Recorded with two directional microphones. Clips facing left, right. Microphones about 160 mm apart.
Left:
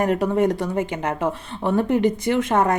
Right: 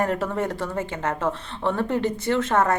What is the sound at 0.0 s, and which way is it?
Speech, 15° left (ahead or behind).